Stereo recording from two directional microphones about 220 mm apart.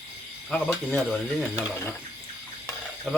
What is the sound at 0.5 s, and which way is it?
Speech, centre (ahead or behind).